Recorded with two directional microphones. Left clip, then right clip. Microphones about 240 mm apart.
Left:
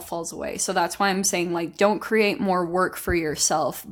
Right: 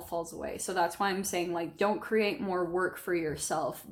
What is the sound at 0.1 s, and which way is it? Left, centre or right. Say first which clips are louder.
A woman's voice: left 6 dB; left.